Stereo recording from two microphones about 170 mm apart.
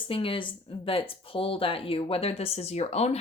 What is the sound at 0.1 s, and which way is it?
Speech, 30° left (ahead or behind).